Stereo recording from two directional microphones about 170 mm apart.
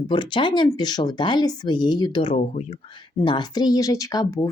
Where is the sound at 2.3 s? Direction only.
45° left (ahead or behind).